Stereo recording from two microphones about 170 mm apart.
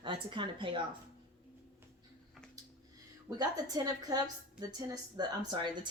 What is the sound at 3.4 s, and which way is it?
Speech, 20° right (ahead or behind).